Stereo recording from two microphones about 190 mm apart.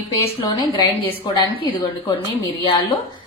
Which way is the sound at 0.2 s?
30° left (ahead or behind).